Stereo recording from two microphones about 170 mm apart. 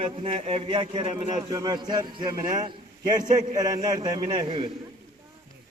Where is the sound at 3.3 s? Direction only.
50° right (ahead or behind).